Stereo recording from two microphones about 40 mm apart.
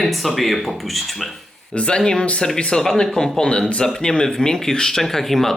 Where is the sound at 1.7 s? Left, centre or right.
Left.